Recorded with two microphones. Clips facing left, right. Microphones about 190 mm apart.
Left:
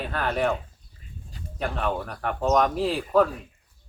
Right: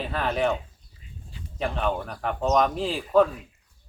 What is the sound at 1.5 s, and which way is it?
Speech, centre (ahead or behind).